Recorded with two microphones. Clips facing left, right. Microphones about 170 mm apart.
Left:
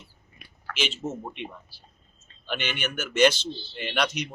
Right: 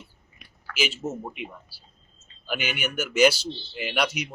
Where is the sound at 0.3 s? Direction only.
55° left (ahead or behind).